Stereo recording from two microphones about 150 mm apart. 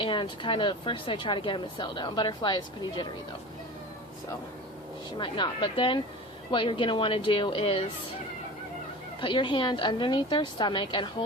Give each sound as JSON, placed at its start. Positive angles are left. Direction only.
{"t": 0.0, "sound": "speech", "side_deg": 35}
{"t": 5.1, "sound": "speech", "side_deg": 35}
{"t": 9.2, "sound": "speech", "side_deg": 35}